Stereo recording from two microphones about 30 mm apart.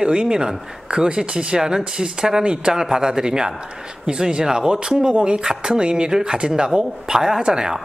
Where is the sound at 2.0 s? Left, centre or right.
Right.